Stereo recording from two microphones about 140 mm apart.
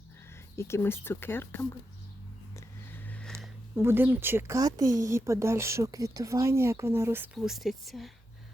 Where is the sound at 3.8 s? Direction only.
15° right (ahead or behind).